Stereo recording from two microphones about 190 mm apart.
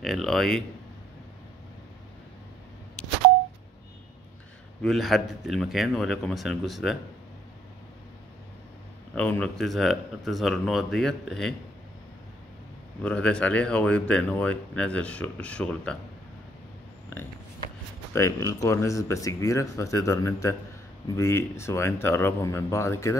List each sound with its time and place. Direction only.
0.0 s speech: centre (ahead or behind)
4.8 s speech: centre (ahead or behind)
9.1 s speech: 5° left (ahead or behind)
13.0 s speech: 5° left (ahead or behind)
18.1 s speech: 15° left (ahead or behind)